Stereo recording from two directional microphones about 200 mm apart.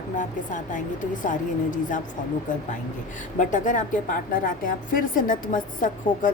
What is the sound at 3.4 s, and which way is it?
A woman's voice, 40° left (ahead or behind).